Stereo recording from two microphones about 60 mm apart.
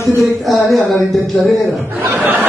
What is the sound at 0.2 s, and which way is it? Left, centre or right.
Speech, centre.